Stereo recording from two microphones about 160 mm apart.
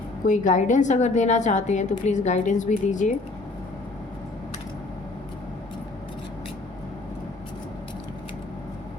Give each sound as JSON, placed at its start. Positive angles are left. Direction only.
{"t": 0.3, "sound": "a woman's voice", "side_deg": 50}